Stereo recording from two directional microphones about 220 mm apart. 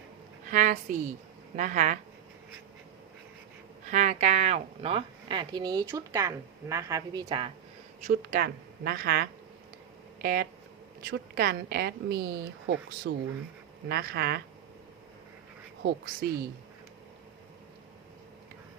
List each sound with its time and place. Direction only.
0.4 s a woman's voice: 35° right (ahead or behind)
3.8 s speech: 35° right (ahead or behind)
8.0 s a woman's voice: 40° right (ahead or behind)